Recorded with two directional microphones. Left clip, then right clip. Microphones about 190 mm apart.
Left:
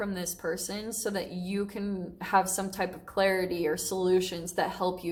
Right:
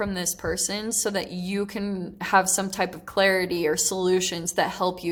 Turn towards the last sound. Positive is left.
turn(degrees=-30)  # may be behind; listen again after turning